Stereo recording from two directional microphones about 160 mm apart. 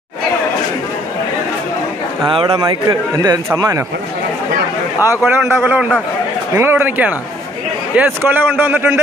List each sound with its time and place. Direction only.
2.2 s a man's voice: 30° right (ahead or behind)
5.0 s a man's voice: 15° right (ahead or behind)